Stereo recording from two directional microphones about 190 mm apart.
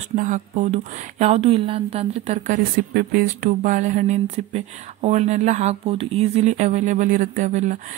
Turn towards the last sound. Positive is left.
turn(degrees=-40)  # may be behind; listen again after turning